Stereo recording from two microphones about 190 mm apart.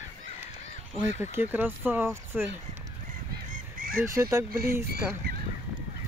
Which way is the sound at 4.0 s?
15° right (ahead or behind).